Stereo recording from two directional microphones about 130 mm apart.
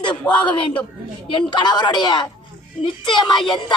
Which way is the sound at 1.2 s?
35° left (ahead or behind).